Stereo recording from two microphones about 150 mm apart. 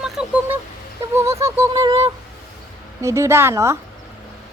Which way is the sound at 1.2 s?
20° right (ahead or behind).